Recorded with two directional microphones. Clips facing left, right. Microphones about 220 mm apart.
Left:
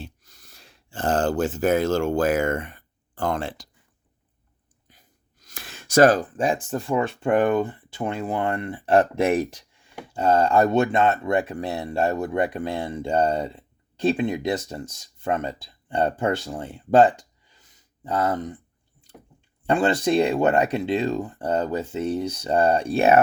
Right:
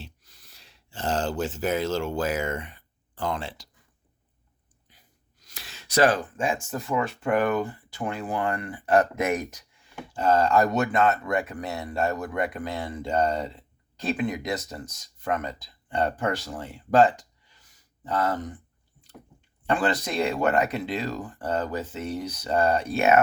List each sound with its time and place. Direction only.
0.0 s speech: 50° left (ahead or behind)
4.9 s speech: 45° left (ahead or behind); by 17.1 s 30° left (ahead or behind)
17.7 s a sound: 20° left (ahead or behind)
19.6 s speech: 25° left (ahead or behind)